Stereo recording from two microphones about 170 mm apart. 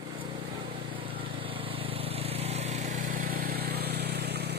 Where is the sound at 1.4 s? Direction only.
30° right (ahead or behind).